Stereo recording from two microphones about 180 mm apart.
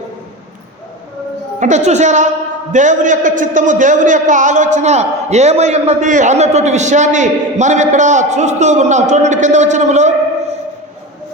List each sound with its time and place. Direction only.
1.5 s a man's voice: 40° right (ahead or behind)